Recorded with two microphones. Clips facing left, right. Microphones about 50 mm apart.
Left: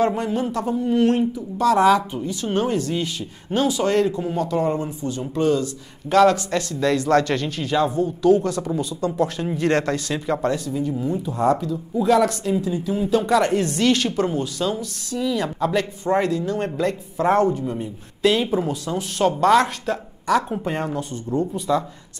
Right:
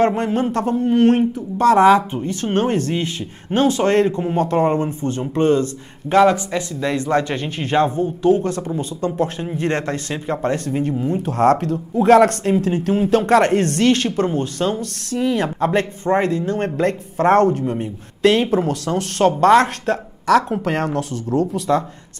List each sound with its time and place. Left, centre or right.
0.0 s speech: right
6.1 s speech: centre
7.6 s speech: right
10.6 s speech: right
19.4 s speech: right
20.2 s speech: right
21.5 s speech: right